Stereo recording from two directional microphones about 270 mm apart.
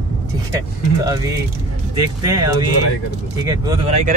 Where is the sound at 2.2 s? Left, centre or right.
Centre.